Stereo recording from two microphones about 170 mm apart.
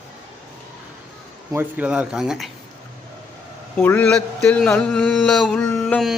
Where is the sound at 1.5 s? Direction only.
10° right (ahead or behind).